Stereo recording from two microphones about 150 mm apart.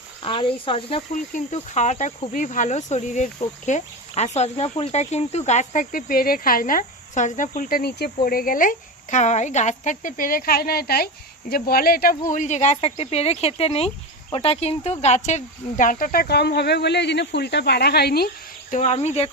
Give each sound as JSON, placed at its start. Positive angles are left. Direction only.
{"t": 0.2, "sound": "speech", "side_deg": 35}
{"t": 1.1, "sound": "cricket", "side_deg": 55}
{"t": 2.3, "sound": "speech", "side_deg": 60}
{"t": 18.7, "sound": "cricket", "side_deg": 45}